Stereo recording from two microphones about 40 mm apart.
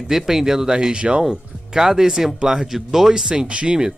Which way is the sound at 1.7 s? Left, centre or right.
Centre.